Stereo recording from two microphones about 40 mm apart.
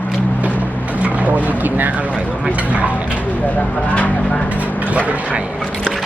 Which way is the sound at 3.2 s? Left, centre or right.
Left.